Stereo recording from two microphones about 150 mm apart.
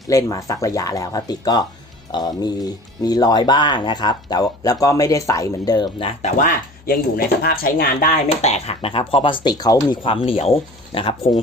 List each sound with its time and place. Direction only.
0.1 s speech: 20° left (ahead or behind)
6.3 s speech: 65° left (ahead or behind); by 7.9 s 80° left
8.3 s speech: 45° left (ahead or behind)